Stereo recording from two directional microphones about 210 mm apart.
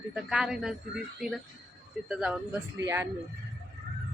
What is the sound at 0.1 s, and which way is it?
Speech, 5° right (ahead or behind).